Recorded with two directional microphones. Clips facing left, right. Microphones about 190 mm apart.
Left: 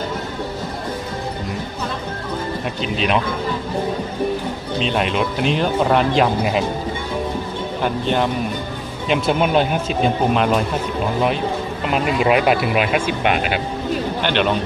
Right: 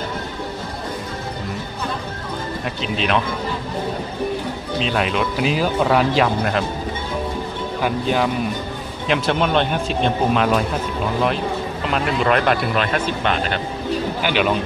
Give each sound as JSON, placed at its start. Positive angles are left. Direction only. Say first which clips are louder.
{"t": 2.8, "sound": "speech", "louder": "left 1 dB", "side_deg": 0}
{"t": 4.7, "sound": "speech", "louder": "left 1 dB", "side_deg": 0}
{"t": 7.8, "sound": "speech", "louder": "even", "side_deg": -5}
{"t": 11.9, "sound": "speech", "louder": "left 2 dB", "side_deg": 5}
{"t": 14.2, "sound": "speech", "louder": "even", "side_deg": -5}